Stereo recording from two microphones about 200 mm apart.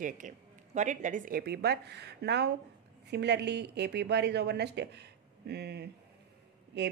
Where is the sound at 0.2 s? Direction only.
40° right (ahead or behind).